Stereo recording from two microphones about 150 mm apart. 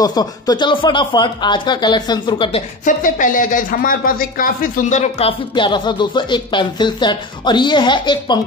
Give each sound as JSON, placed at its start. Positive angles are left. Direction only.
{"t": 0.0, "sound": "speech", "side_deg": 25}
{"t": 2.8, "sound": "speech", "side_deg": 60}
{"t": 5.5, "sound": "speech", "side_deg": 30}